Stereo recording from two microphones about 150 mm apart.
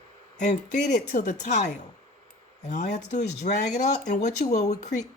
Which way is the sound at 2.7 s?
55° left (ahead or behind).